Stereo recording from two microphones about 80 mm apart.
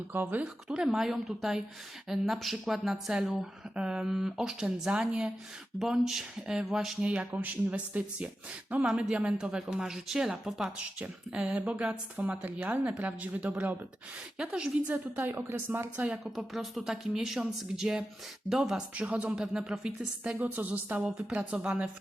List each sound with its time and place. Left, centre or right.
0.1 s speech: right
0.4 s a woman's voice: centre
7.0 s a woman's voice: centre
16.1 s a woman's voice: centre
20.4 s a woman's voice: right